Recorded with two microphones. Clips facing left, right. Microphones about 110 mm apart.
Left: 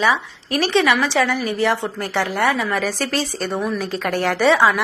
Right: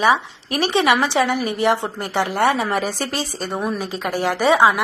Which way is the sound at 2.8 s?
15° right (ahead or behind).